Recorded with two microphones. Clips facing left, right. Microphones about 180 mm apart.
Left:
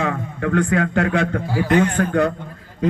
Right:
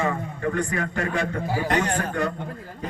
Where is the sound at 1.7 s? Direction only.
40° right (ahead or behind).